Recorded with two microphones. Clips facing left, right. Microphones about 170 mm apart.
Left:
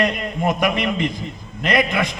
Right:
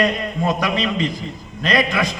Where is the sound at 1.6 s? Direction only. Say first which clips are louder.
Even; 20° left (ahead or behind).